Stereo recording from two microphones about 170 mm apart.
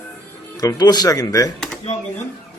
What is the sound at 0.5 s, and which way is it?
Speech, 20° left (ahead or behind).